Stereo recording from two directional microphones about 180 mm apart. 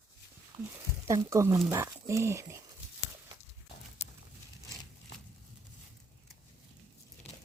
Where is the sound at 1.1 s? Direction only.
15° right (ahead or behind).